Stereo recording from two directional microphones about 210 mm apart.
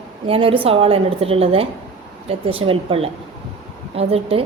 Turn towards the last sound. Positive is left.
turn(degrees=-25)  # may be behind; listen again after turning